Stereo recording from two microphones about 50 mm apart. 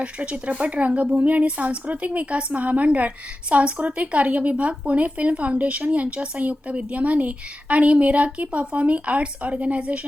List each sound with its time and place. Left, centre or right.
0.0 s speech: right